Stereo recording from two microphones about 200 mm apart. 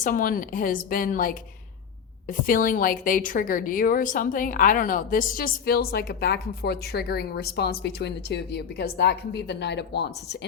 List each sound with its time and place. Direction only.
0.0 s a woman's voice: 45° left (ahead or behind)